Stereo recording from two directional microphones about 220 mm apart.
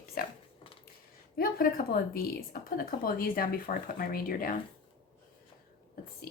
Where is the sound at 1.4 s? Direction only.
40° left (ahead or behind).